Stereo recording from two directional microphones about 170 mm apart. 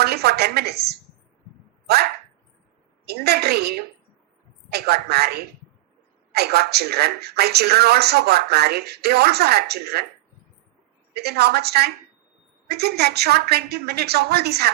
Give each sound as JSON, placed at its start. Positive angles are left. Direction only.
{"t": 0.0, "sound": "speech", "side_deg": -70}
{"t": 3.1, "sound": "speech", "side_deg": -70}
{"t": 11.1, "sound": "speech", "side_deg": -70}